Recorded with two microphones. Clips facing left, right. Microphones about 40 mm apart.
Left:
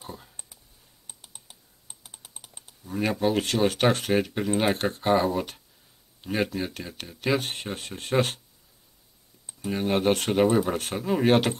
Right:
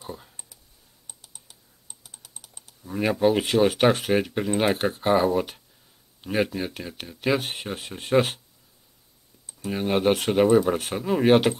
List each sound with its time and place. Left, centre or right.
0.0 s clicking: centre
1.0 s typing: left
2.8 s speech: centre
9.7 s speech: centre